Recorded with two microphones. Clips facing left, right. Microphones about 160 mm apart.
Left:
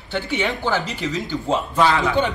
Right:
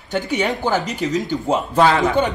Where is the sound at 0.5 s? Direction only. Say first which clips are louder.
Right 2 dB; 15° right (ahead or behind).